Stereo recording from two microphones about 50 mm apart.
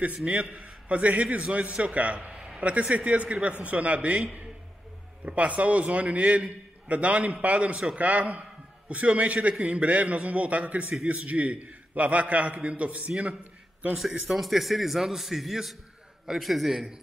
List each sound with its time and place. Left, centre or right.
0.1 s a man's voice: right
14.2 s a man's voice: centre